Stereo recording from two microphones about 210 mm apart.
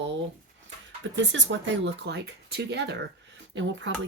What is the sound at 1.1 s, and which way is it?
Speech, 60° right (ahead or behind).